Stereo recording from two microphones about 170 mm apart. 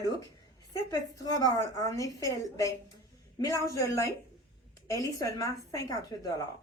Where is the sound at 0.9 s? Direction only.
20° left (ahead or behind).